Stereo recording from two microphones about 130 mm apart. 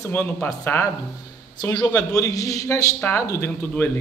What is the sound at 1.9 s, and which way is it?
A man's voice, 25° left (ahead or behind).